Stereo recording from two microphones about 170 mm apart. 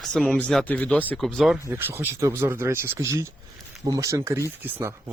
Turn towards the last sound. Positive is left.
turn(degrees=-10)  # may be behind; listen again after turning